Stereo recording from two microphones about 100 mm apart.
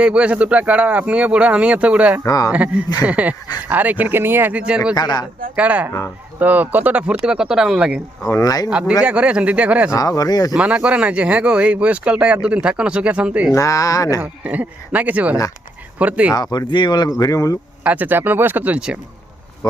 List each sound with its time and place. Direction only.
0.0 s speech: 10° right (ahead or behind)
2.2 s speech: 40° left (ahead or behind)
2.5 s speech: 10° right (ahead or behind)
4.9 s speech: 45° left (ahead or behind)
5.5 s speech: 15° right (ahead or behind)
8.2 s speech: 40° left (ahead or behind)
9.0 s speech: 10° right (ahead or behind)
9.9 s speech: 40° left (ahead or behind)
10.5 s speech: 10° right (ahead or behind)
13.5 s speech: 35° left (ahead or behind)
14.2 s speech: 15° right (ahead or behind)
16.3 s speech: 45° left (ahead or behind)
17.8 s speech: 15° right (ahead or behind)